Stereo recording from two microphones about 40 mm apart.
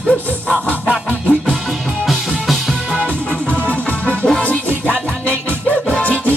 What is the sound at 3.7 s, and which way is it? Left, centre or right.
Music, left.